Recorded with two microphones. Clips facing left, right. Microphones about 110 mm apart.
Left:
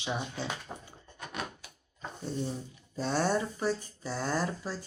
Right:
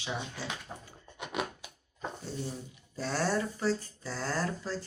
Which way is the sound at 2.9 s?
20° left (ahead or behind).